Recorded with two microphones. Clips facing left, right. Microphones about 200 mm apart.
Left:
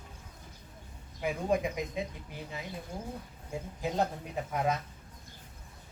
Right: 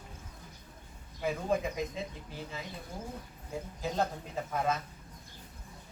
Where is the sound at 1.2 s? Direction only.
15° left (ahead or behind).